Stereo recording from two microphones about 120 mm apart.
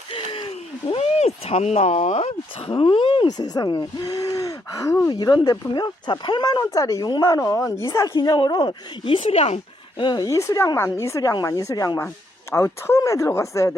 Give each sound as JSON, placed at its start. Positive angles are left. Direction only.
{"t": 0.1, "sound": "a sound", "side_deg": 50}
{"t": 2.6, "sound": "speech", "side_deg": 45}
{"t": 8.1, "sound": "speech", "side_deg": 35}
{"t": 10.0, "sound": "speech", "side_deg": 35}